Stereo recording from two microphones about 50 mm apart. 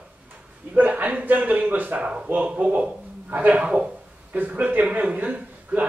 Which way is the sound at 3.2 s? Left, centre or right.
Right.